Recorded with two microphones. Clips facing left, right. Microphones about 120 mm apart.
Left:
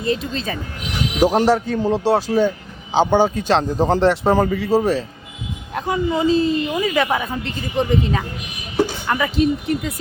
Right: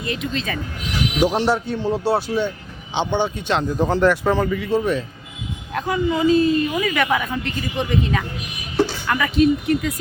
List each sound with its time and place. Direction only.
0.0 s speech: 30° left (ahead or behind)
4.4 s a woman's voice: 40° left (ahead or behind)